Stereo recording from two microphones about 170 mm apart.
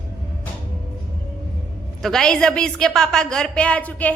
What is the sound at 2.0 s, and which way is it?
A woman's voice, 5° left (ahead or behind).